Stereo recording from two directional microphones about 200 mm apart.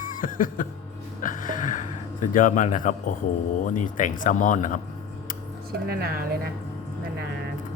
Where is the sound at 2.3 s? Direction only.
40° left (ahead or behind).